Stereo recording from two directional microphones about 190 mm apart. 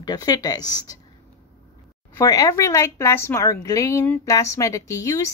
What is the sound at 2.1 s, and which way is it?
Speech, 15° left (ahead or behind).